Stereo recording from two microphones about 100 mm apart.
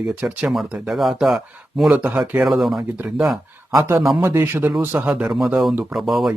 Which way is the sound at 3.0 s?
5° right (ahead or behind).